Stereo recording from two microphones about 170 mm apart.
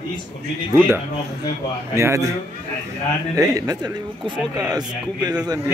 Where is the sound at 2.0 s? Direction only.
20° right (ahead or behind).